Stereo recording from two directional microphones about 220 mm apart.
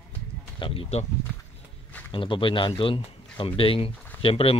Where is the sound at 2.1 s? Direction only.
25° left (ahead or behind).